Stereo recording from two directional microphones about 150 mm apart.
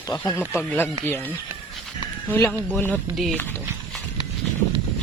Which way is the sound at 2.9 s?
Centre (ahead or behind).